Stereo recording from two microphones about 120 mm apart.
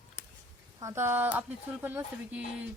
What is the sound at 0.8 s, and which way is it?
A woman's voice, 25° right (ahead or behind).